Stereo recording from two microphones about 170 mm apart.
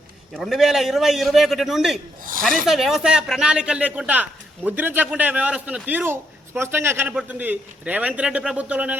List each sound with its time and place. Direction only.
0.3 s a man's voice: centre (ahead or behind)